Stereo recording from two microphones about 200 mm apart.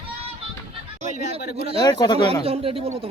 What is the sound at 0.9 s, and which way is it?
Speech, 35° right (ahead or behind).